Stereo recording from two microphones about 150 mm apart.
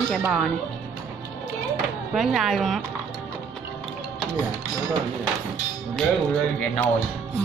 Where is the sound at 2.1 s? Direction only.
Centre (ahead or behind).